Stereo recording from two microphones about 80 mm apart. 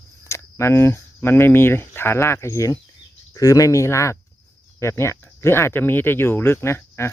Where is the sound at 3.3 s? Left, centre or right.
Left.